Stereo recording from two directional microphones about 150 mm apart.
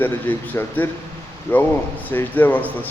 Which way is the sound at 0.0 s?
15° left (ahead or behind).